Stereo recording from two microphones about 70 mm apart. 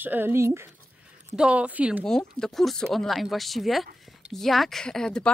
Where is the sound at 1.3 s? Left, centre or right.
Centre.